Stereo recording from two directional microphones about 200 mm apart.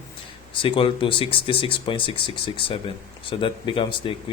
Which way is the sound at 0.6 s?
25° left (ahead or behind).